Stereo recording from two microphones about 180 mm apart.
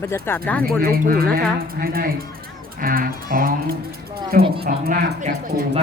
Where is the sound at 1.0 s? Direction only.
55° right (ahead or behind).